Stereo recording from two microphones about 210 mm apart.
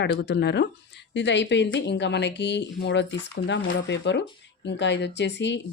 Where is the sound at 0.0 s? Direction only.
55° left (ahead or behind).